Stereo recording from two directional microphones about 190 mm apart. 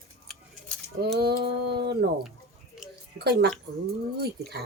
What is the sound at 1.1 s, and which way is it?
Speech, 60° right (ahead or behind).